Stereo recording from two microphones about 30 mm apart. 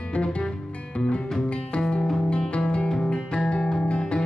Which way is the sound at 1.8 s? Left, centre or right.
Left.